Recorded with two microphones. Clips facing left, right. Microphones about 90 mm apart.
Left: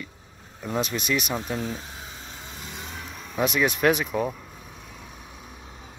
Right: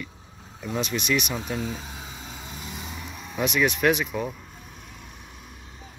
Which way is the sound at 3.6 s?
35° left (ahead or behind).